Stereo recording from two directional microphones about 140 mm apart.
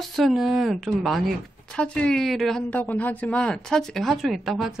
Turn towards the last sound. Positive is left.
turn(degrees=0)  # may be behind; listen again after turning